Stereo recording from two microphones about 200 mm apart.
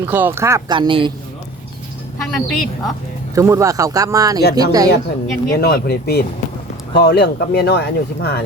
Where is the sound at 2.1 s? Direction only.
Centre (ahead or behind).